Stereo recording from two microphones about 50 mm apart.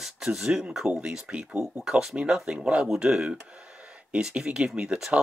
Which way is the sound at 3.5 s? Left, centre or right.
Right.